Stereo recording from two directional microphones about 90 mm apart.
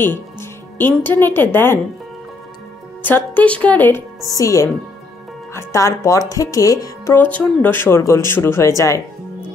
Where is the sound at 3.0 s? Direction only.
20° left (ahead or behind).